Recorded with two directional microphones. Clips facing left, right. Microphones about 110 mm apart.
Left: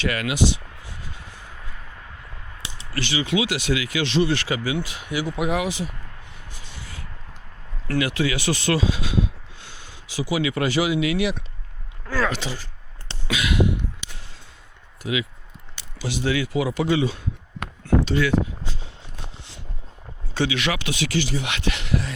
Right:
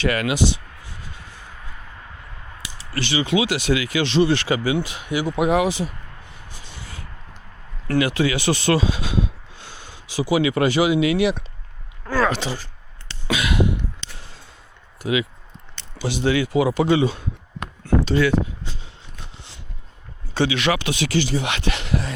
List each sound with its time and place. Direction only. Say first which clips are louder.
0.0 s speech: right 2 dB; 35° right (ahead or behind)
2.6 s a sound: left 1 dB; 25° left (ahead or behind)
2.9 s speech: right 3 dB; 30° right (ahead or behind)
6.5 s rub: right 2 dB; 30° right (ahead or behind)
7.9 s speech: right 3 dB; 25° right (ahead or behind)
13.2 s a sound: right 1 dB; 35° right (ahead or behind)
14.0 s a sound: even; 15° left (ahead or behind)
15.0 s speech: right 4 dB; 35° right (ahead or behind)
17.6 s chop: even; 35° right (ahead or behind)
20.3 s speech: right 4 dB; 30° right (ahead or behind)